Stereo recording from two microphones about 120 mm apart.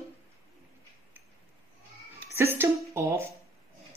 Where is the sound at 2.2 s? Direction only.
20° right (ahead or behind).